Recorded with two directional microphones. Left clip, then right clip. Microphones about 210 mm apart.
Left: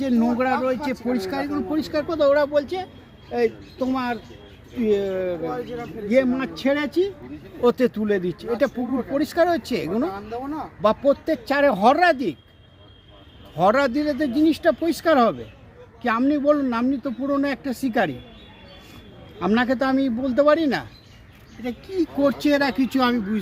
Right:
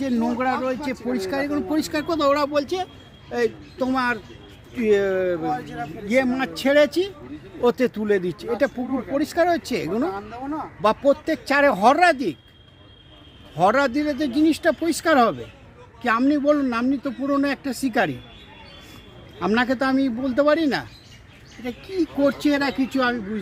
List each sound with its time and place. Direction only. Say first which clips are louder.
0.0 s speech: left 1 dB; 5° left (ahead or behind)
1.4 s speech: right 2 dB; 25° right (ahead or behind)
1.7 s speech: left 1 dB; 50° right (ahead or behind); by 5.5 s 25° right (ahead or behind)
5.5 s speech: right 2 dB; 50° right (ahead or behind)
7.6 s speech: left 1 dB; 5° right (ahead or behind)
10.1 s speech: even; 25° left (ahead or behind)
10.8 s speech: even; 10° right (ahead or behind)
13.6 s speech: even; centre (ahead or behind)
19.4 s speech: even; centre (ahead or behind); by 22.7 s 15° left (ahead or behind)
22.8 s speech: left 1 dB; 40° left (ahead or behind)